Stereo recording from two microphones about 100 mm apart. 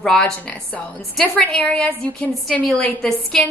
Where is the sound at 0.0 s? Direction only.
5° left (ahead or behind).